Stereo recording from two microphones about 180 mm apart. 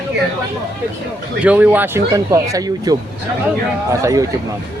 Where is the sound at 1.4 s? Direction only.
10° right (ahead or behind).